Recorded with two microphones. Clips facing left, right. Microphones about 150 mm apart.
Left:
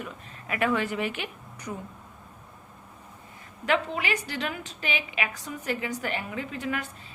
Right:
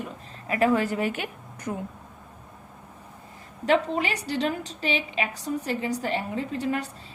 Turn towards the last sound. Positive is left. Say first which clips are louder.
# right 4 dB
turn(degrees=-35)  # may be behind; listen again after turning